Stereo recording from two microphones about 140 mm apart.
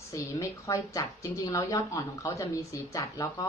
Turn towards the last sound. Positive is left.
turn(degrees=25)  # may be behind; listen again after turning